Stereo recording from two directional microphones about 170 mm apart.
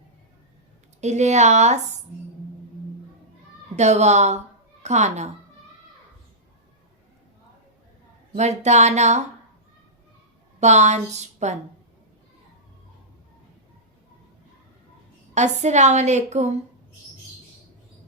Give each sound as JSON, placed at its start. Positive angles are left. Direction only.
{"t": 1.0, "sound": "a woman's voice", "side_deg": -40}
{"t": 3.8, "sound": "a woman's voice", "side_deg": -40}
{"t": 8.4, "sound": "a woman's voice", "side_deg": -40}
{"t": 10.6, "sound": "a woman's voice", "side_deg": -40}
{"t": 15.4, "sound": "a woman's voice", "side_deg": -45}